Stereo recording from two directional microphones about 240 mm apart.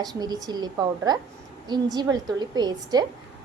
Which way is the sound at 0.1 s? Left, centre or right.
Centre.